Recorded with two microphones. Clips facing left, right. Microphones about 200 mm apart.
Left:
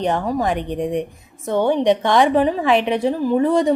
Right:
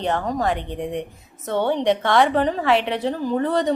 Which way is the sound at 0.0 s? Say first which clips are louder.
Left 3 dB; 15° left (ahead or behind).